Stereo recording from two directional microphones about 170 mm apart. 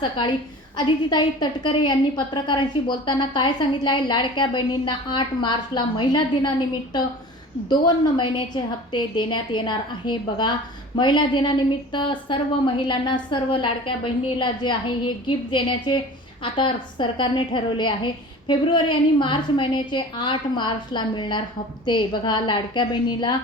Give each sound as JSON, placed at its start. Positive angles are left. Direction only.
{"t": 0.8, "sound": "a woman's voice", "side_deg": 25}